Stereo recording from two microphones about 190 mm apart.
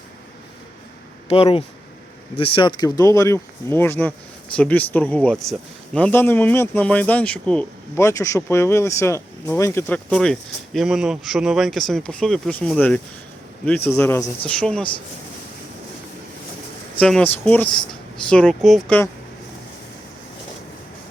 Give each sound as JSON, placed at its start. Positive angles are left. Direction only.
{"t": 1.3, "sound": "speech", "side_deg": 30}
{"t": 17.0, "sound": "speech", "side_deg": 5}